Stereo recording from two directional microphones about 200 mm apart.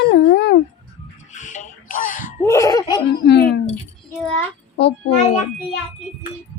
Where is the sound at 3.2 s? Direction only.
55° left (ahead or behind).